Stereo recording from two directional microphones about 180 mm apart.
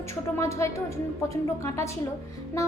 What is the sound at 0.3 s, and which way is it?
A woman's voice, 15° left (ahead or behind).